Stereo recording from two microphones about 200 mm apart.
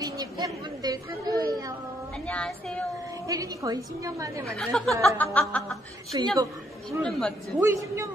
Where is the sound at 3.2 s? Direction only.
15° right (ahead or behind).